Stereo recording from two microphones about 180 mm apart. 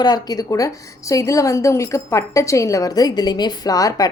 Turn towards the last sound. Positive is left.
turn(degrees=20)  # may be behind; listen again after turning